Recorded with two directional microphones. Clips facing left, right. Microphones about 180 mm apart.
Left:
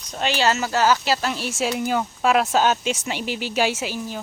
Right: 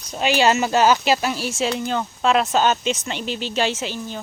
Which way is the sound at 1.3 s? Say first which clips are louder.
Right 1 dB; centre (ahead or behind).